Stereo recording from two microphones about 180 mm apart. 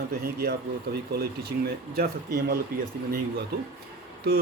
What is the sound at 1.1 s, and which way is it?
Speech, 60° right (ahead or behind).